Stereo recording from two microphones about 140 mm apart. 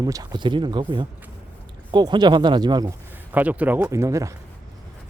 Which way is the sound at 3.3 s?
10° right (ahead or behind).